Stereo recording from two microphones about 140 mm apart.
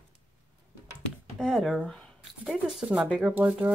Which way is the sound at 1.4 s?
Centre (ahead or behind).